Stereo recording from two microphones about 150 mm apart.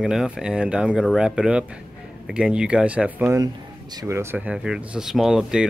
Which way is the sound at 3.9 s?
20° right (ahead or behind).